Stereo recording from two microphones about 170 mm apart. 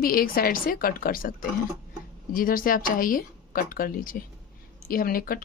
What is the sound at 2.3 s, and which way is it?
Speech, 55° left (ahead or behind).